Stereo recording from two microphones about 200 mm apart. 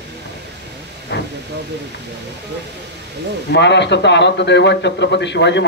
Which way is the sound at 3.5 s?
60° left (ahead or behind).